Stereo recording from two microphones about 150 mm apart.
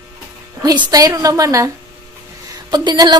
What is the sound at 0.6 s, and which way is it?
A woman's voice, 30° right (ahead or behind).